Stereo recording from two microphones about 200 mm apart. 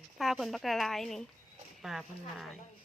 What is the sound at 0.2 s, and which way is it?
Speech, centre (ahead or behind).